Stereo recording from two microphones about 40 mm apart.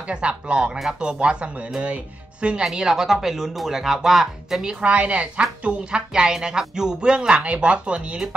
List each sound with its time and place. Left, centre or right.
0.1 s a woman's voice: right; by 4.6 s centre
4.6 s a woman's voice: right